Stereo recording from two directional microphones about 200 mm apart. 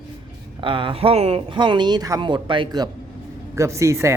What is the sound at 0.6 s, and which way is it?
A man's voice, 25° right (ahead or behind).